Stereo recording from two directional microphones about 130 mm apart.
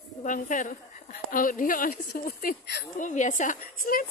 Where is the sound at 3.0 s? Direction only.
75° left (ahead or behind).